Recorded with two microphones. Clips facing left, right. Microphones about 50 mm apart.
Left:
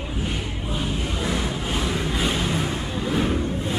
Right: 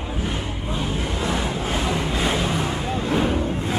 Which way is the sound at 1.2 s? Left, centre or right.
Right.